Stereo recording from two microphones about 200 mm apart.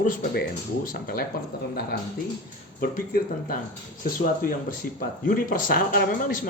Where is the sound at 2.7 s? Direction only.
45° left (ahead or behind).